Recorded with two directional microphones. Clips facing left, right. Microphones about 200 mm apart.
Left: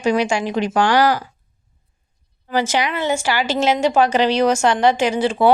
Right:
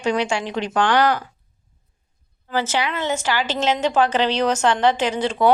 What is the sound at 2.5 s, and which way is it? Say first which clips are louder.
A woman's voice: left 3 dB; 15° left (ahead or behind).